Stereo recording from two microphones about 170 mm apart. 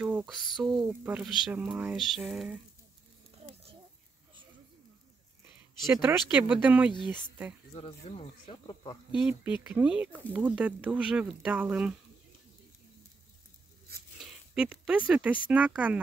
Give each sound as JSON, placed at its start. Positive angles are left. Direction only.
{"t": 0.0, "sound": "speech", "side_deg": -5}
{"t": 5.9, "sound": "speech", "side_deg": -5}
{"t": 6.9, "sound": "speech", "side_deg": 25}
{"t": 9.1, "sound": "speech", "side_deg": -5}
{"t": 14.1, "sound": "a sound", "side_deg": -5}
{"t": 15.4, "sound": "speech", "side_deg": -10}